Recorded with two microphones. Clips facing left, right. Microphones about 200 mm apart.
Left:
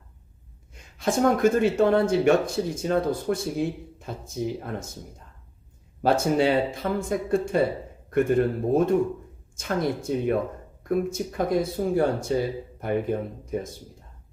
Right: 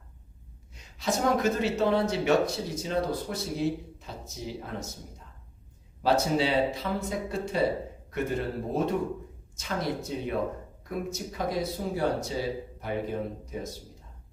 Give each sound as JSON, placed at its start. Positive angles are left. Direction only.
{"t": 0.7, "sound": "speech", "side_deg": 50}
{"t": 6.0, "sound": "speech", "side_deg": 50}